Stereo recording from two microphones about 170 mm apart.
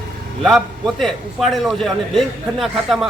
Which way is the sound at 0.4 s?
Centre (ahead or behind).